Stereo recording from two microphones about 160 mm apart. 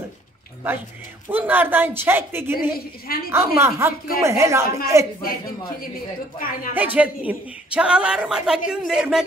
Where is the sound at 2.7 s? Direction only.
70° left (ahead or behind).